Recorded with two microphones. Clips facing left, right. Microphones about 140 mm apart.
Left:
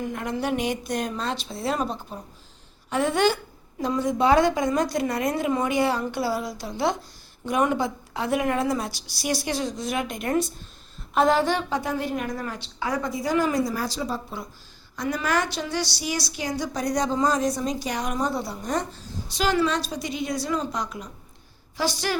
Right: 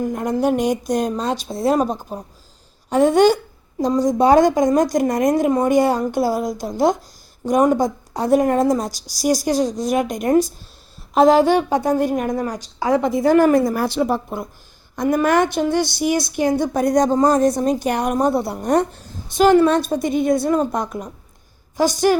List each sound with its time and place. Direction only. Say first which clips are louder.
0.0 s a woman's voice: right 8 dB; 45° right (ahead or behind)
13.0 s a woman's voice: right 10 dB; 55° right (ahead or behind)